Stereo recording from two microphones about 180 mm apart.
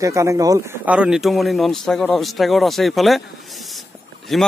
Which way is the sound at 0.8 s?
5° right (ahead or behind).